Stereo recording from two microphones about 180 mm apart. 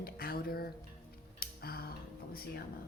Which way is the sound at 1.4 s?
60° left (ahead or behind).